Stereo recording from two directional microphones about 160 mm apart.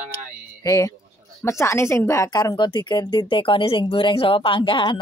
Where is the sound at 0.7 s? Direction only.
20° left (ahead or behind).